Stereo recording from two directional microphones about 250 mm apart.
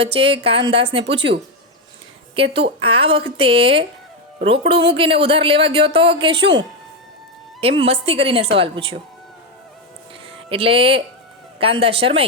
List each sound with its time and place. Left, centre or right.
0.1 s speech: right
2.3 s speech: right
7.6 s speech: right
10.3 s speech: right